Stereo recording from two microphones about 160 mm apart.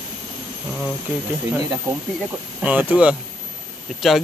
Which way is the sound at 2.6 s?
10° right (ahead or behind).